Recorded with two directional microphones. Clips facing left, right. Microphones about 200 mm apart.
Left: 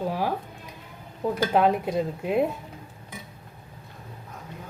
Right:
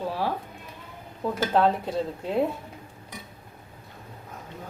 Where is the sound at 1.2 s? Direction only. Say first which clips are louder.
Left 1 dB; 15° left (ahead or behind).